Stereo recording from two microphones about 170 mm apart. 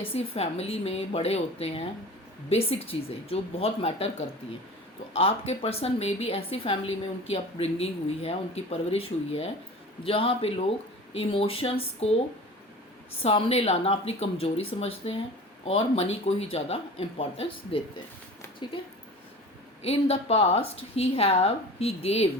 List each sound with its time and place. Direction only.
0.0 s a woman's voice: 35° left (ahead or behind)
5.1 s a woman's voice: 35° left (ahead or behind)
13.2 s a woman's voice: 35° left (ahead or behind)
19.8 s a woman's voice: 35° left (ahead or behind)